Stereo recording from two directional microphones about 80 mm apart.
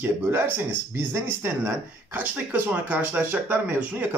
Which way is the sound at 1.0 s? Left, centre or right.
Right.